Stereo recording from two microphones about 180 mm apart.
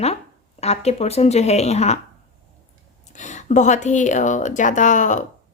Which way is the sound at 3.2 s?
40° left (ahead or behind).